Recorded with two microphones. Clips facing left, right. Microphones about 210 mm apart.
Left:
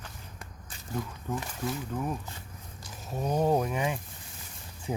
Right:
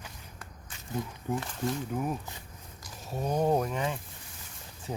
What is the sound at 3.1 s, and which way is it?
Speech, centre (ahead or behind).